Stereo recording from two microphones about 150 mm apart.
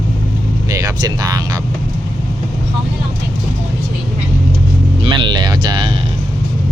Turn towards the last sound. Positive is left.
turn(degrees=-30)  # may be behind; listen again after turning